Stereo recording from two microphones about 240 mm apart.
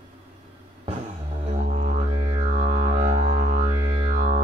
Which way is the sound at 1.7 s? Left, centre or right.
Right.